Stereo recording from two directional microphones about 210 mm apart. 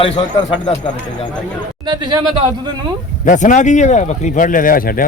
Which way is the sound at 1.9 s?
20° right (ahead or behind).